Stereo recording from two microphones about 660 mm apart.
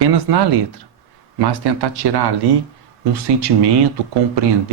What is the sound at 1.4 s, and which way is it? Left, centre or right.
Speech, right.